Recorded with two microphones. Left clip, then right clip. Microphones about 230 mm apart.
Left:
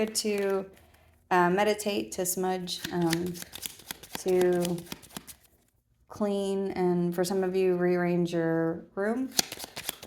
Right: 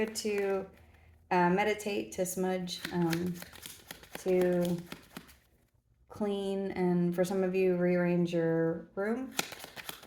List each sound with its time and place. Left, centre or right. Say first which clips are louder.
0.0 s a woman's voice: left 4 dB; left